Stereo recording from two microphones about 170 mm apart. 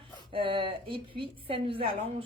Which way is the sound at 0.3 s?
30° right (ahead or behind).